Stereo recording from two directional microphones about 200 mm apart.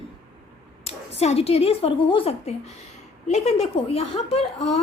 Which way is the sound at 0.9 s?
30° left (ahead or behind).